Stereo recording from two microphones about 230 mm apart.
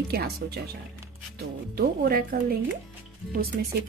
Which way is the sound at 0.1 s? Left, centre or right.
Right.